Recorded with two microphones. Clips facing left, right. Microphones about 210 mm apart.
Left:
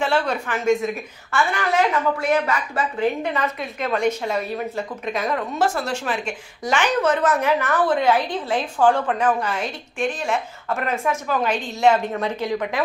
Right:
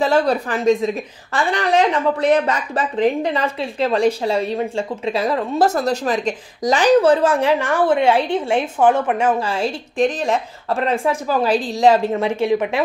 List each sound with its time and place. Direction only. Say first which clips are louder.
0.0 s a woman's voice: right 5 dB; 35° right (ahead or behind)